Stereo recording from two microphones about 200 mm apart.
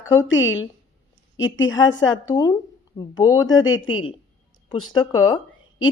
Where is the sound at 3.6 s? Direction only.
90° left.